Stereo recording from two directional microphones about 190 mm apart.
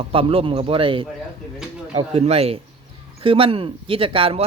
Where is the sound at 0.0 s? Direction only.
30° right (ahead or behind).